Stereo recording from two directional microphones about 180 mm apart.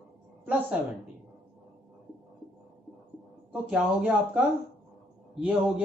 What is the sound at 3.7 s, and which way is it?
Speech, 5° right (ahead or behind).